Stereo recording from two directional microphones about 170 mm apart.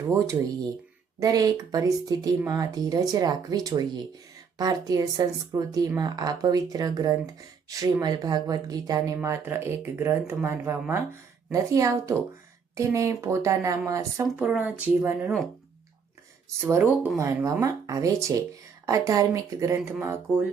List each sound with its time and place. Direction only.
0.1 s speech: 20° right (ahead or behind)
14.4 s speech: 5° right (ahead or behind)
16.6 s speech: 15° right (ahead or behind)